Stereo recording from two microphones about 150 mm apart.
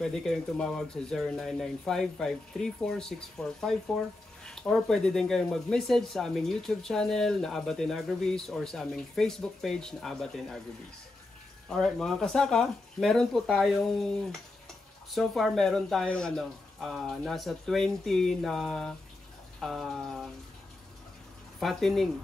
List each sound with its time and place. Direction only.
0.0 s speech: 5° left (ahead or behind)
11.7 s speech: 5° left (ahead or behind)
21.5 s speech: centre (ahead or behind)